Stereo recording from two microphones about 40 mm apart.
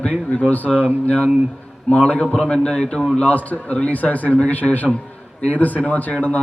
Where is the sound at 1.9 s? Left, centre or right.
Left.